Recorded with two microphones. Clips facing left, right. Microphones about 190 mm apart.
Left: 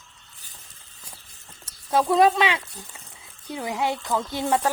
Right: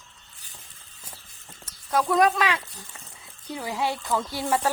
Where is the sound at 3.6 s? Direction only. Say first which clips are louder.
Left 2 dB; 20° left (ahead or behind).